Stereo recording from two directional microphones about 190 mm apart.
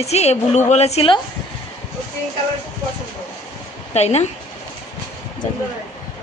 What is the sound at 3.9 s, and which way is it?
Speech, 35° left (ahead or behind).